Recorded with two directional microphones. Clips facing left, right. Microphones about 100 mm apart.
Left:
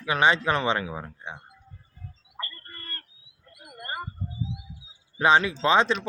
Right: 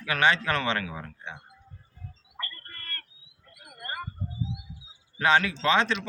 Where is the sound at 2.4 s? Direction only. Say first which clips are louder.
Left 1 dB; 25° left (ahead or behind).